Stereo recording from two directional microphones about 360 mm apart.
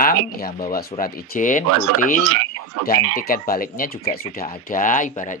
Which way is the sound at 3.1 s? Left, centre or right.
Left.